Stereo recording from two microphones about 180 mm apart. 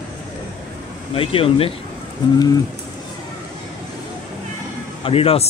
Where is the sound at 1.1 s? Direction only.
30° left (ahead or behind).